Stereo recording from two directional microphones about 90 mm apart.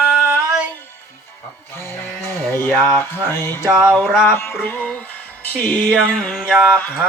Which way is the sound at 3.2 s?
25° left (ahead or behind).